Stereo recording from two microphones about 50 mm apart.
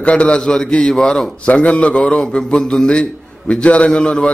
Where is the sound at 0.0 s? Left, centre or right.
Left.